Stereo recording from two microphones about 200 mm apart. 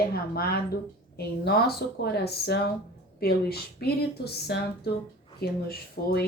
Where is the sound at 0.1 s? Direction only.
50° left (ahead or behind).